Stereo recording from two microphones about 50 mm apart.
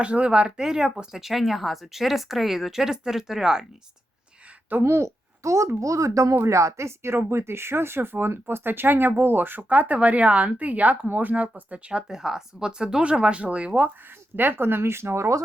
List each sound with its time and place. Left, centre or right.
0.0 s speech: right
4.8 s a woman's voice: right
11.9 s speech: centre
14.3 s speech: right